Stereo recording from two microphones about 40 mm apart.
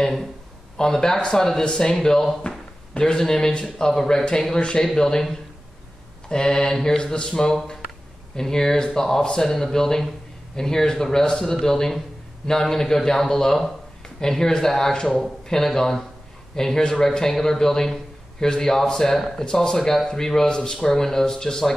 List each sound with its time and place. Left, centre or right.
0.0 s speech: centre
2.9 s speech: left
4.9 s speech: centre